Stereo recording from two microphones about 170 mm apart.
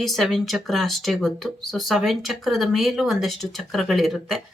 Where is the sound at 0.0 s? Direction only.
Centre (ahead or behind).